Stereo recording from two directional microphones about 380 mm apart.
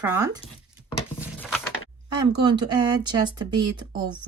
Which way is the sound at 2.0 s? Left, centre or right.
Centre.